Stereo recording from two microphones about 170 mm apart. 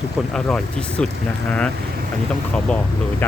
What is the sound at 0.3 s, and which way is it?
Speech, 5° left (ahead or behind).